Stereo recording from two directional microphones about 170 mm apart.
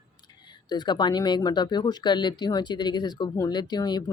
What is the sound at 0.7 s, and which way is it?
Speech, 25° left (ahead or behind).